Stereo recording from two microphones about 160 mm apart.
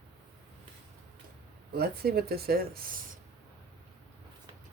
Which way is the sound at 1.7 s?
75° right (ahead or behind).